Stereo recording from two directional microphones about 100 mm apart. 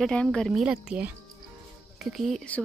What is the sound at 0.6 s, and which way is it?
Speech, 10° right (ahead or behind).